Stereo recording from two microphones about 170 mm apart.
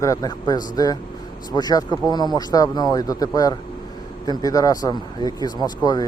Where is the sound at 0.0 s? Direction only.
20° left (ahead or behind).